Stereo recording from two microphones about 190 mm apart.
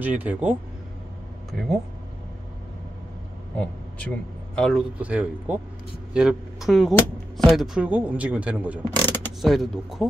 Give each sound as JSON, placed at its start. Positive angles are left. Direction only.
{"t": 0.0, "sound": "speech", "side_deg": -10}
{"t": 4.6, "sound": "speech", "side_deg": 5}
{"t": 9.0, "sound": "a sound", "side_deg": 10}
{"t": 9.4, "sound": "speech", "side_deg": 0}